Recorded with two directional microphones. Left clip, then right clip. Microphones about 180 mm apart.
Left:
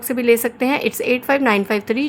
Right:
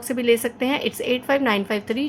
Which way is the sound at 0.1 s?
25° left (ahead or behind).